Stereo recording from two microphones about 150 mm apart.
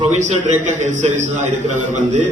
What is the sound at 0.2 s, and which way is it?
A man's voice, 50° right (ahead or behind).